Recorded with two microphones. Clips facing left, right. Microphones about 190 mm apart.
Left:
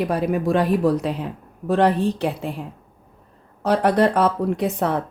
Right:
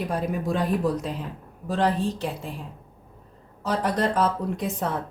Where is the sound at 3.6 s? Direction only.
65° left (ahead or behind).